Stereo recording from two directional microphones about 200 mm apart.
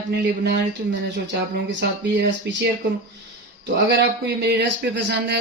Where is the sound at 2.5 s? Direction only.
60° right (ahead or behind).